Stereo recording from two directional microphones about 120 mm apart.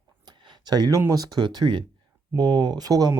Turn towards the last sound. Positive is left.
turn(degrees=-30)  # may be behind; listen again after turning